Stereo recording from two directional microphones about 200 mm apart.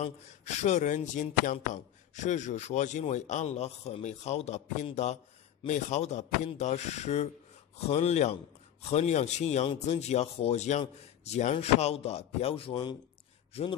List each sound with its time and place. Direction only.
0.0 s speech: 35° left (ahead or behind)